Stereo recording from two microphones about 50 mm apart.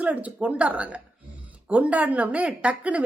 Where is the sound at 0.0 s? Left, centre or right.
Right.